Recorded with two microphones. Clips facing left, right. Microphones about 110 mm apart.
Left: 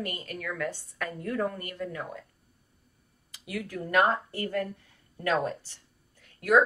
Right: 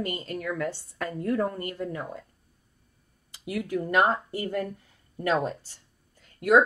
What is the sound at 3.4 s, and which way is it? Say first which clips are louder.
A woman's voice: right 6 dB; 25° right (ahead or behind).